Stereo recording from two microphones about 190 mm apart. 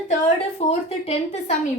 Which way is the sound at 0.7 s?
35° left (ahead or behind).